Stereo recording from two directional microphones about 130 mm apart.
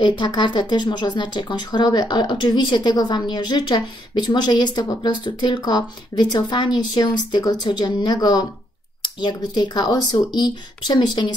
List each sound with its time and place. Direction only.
0.0 s speech: 35° left (ahead or behind)